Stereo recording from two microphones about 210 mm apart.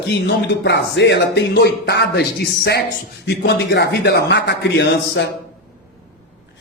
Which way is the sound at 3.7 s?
50° left (ahead or behind).